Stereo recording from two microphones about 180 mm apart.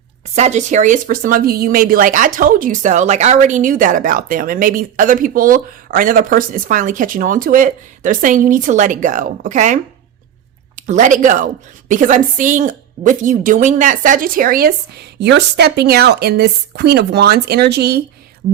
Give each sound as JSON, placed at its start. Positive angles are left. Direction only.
{"t": 0.3, "sound": "speech", "side_deg": -40}
{"t": 10.8, "sound": "speech", "side_deg": -45}